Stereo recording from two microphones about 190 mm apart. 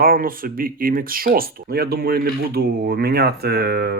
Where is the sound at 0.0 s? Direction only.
50° right (ahead or behind).